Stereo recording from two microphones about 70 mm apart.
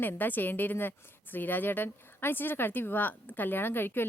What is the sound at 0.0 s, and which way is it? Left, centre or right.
A woman's voice, left.